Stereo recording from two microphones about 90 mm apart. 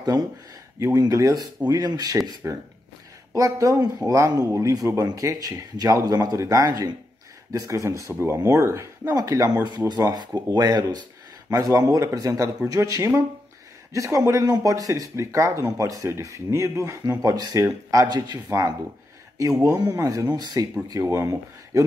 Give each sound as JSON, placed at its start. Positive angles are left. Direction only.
{"t": 0.0, "sound": "speech", "side_deg": -45}
{"t": 0.7, "sound": "speech", "side_deg": -35}
{"t": 3.3, "sound": "speech", "side_deg": -40}
{"t": 6.3, "sound": "speech", "side_deg": -35}
{"t": 9.1, "sound": "speech", "side_deg": -40}
{"t": 18.0, "sound": "speech", "side_deg": -50}
{"t": 18.5, "sound": "speech", "side_deg": -40}
{"t": 21.0, "sound": "speech", "side_deg": -30}